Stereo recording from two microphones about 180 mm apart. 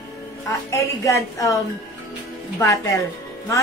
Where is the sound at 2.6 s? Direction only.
20° left (ahead or behind).